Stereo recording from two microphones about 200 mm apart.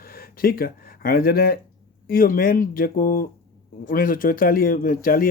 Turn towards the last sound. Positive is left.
turn(degrees=45)  # may be behind; listen again after turning